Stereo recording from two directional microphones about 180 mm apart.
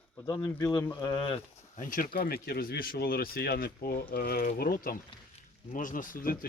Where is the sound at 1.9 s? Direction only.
50° left (ahead or behind).